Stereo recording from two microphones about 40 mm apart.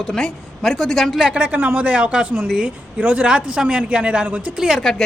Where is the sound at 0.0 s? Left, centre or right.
Centre.